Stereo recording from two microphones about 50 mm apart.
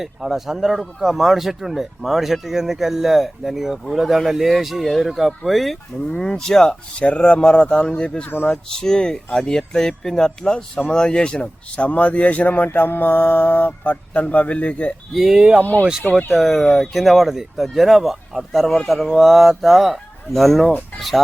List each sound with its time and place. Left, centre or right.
0.0 s speech: centre
6.1 s speech: centre
15.1 s speech: centre
16.3 s speech: centre